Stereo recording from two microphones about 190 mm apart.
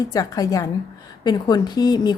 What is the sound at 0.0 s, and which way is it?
A woman's voice, 20° left (ahead or behind).